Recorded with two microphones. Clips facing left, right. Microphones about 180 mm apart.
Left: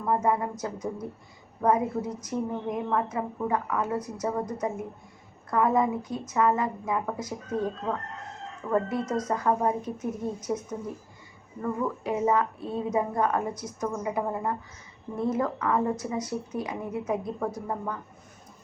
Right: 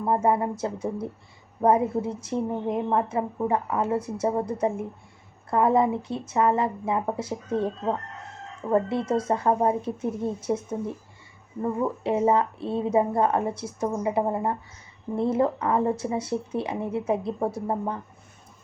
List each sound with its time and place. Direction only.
0.0 s a woman's voice: 30° right (ahead or behind)